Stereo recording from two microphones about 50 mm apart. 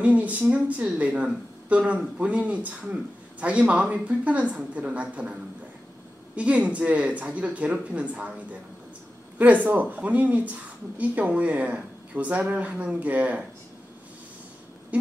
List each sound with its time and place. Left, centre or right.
0.0 s speech: right